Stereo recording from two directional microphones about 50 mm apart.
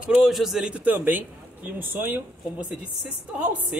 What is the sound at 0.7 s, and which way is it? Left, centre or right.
Speech, right.